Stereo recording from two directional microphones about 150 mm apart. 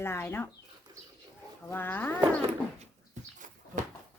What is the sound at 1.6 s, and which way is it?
Speech, 15° left (ahead or behind).